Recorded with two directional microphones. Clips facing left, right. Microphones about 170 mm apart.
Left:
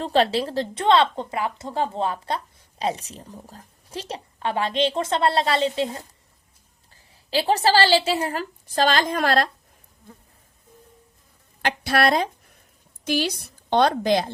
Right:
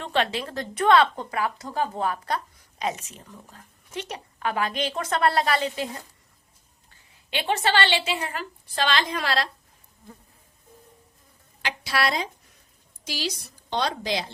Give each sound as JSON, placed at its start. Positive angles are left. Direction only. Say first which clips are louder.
{"t": 0.0, "sound": "a woman's voice", "louder": "left 6 dB", "side_deg": 35}
{"t": 11.6, "sound": "a woman's voice", "louder": "left 6 dB", "side_deg": 55}